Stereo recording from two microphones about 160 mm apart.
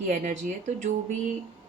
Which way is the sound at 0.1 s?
50° right (ahead or behind).